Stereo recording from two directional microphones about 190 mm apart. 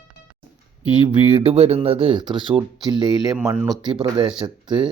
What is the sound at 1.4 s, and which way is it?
Speech, 30° right (ahead or behind).